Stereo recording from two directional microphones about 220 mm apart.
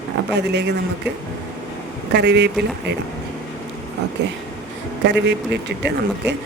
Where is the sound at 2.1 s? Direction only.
50° right (ahead or behind).